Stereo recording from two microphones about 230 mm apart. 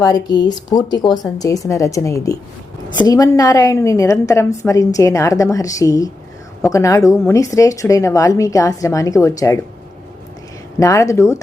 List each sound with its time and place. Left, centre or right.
0.0 s a woman's voice: centre
10.8 s a woman's voice: centre